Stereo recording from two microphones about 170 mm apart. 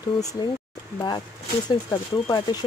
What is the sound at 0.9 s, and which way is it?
Speech, 25° left (ahead or behind).